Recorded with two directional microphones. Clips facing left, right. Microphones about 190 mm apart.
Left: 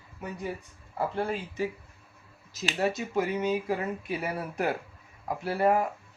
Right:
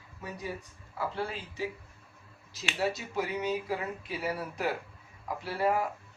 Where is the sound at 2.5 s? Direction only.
45° left (ahead or behind).